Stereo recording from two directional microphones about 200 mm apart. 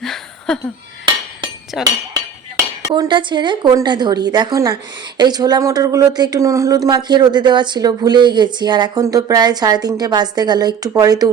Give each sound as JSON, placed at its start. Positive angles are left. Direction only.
{"t": 0.0, "sound": "a sound", "side_deg": 5}
{"t": 1.7, "sound": "speech", "side_deg": 0}
{"t": 2.8, "sound": "speech", "side_deg": -20}